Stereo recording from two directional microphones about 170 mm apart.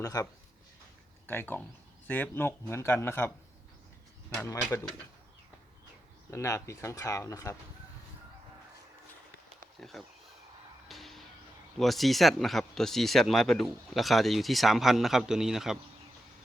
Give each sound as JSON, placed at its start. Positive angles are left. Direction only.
{"t": 0.0, "sound": "speech", "side_deg": 20}
{"t": 1.3, "sound": "speech", "side_deg": 10}
{"t": 4.4, "sound": "speech", "side_deg": 15}
{"t": 6.3, "sound": "speech", "side_deg": 15}
{"t": 10.0, "sound": "speech", "side_deg": 0}
{"t": 10.8, "sound": "music", "side_deg": 0}
{"t": 11.8, "sound": "speech", "side_deg": 0}